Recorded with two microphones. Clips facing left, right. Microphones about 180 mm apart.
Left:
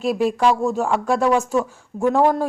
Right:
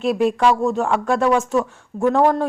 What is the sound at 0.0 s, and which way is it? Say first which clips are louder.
A woman's voice: right 1 dB; centre (ahead or behind).